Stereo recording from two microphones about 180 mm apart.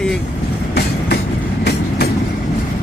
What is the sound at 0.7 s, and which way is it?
Train, 65° left (ahead or behind).